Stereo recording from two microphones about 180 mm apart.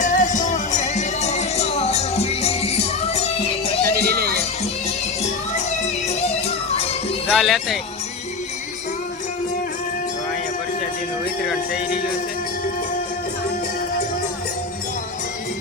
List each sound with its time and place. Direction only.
0.0 s music: 45° left (ahead or behind)
3.8 s music: 60° right (ahead or behind)
6.7 s music: 30° left (ahead or behind)
7.3 s speech: centre (ahead or behind)
11.4 s music: 5° right (ahead or behind)